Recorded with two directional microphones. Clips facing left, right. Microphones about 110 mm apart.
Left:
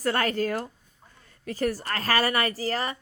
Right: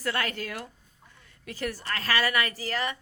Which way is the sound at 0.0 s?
40° left (ahead or behind).